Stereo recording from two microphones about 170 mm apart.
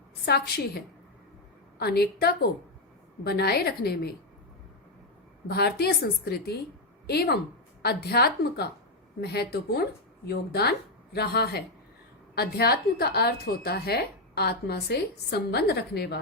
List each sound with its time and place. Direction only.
0.3 s a woman's voice: 65° left (ahead or behind)
1.8 s a woman's voice: 65° left (ahead or behind)
5.5 s a woman's voice: 65° left (ahead or behind)